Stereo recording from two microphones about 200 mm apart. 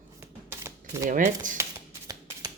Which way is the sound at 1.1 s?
40° right (ahead or behind).